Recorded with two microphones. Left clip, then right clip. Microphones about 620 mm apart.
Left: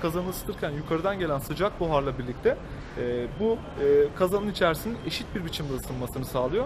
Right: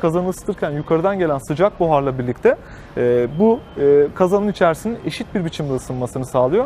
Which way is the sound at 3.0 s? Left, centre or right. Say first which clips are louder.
Right 13 dB; right.